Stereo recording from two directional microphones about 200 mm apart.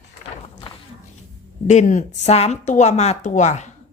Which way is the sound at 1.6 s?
40° left (ahead or behind).